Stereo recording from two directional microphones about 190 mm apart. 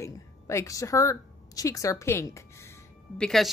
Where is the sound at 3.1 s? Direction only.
5° left (ahead or behind).